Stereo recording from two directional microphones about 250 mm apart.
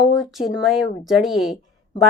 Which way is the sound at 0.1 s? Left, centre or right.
Centre.